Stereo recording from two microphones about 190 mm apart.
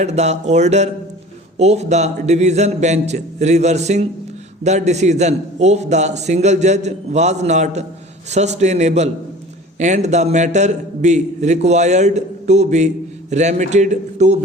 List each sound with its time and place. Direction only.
0.0 s a man's voice: 35° right (ahead or behind)